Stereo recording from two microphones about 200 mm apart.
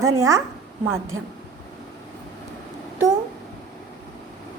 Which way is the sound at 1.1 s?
90° right.